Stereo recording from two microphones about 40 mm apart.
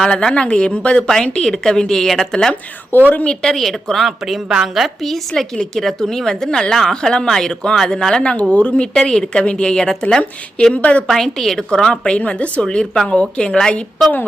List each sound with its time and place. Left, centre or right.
0.1 s a woman's voice: left
1.2 s a woman's voice: centre
2.9 s a woman's voice: left
3.4 s a woman's voice: centre
5.5 s a woman's voice: centre; by 8.9 s left
9.0 s a woman's voice: centre
10.8 s speech: left
11.1 s a woman's voice: centre
12.2 s speech: left
12.6 s a woman's voice: left